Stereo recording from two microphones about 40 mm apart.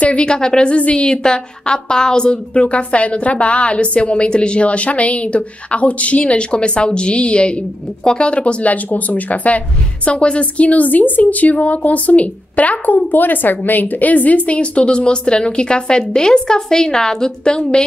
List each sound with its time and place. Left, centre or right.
0.0 s a woman's voice: left
0.7 s a woman's voice: left
8.6 s a woman's voice: left
10.0 s a woman's voice: left